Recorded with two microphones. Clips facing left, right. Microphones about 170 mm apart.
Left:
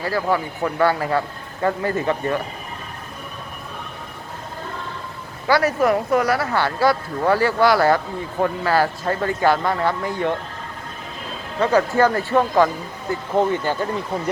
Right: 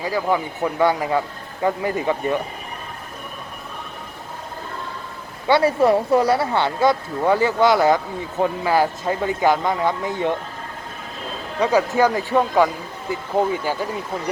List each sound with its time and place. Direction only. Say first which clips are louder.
0.0 s speech: even; 15° right (ahead or behind)
5.5 s speech: right 2 dB; 25° right (ahead or behind)
11.6 s speech: even; 10° right (ahead or behind)